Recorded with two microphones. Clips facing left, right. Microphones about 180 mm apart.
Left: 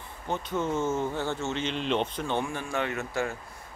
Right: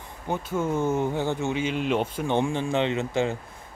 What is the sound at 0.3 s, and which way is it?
Speech, 10° right (ahead or behind).